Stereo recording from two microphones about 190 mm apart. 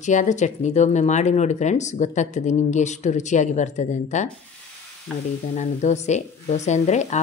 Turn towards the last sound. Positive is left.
turn(degrees=40)  # may be behind; listen again after turning